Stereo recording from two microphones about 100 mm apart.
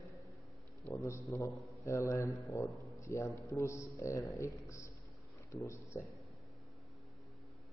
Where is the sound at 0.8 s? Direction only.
30° left (ahead or behind).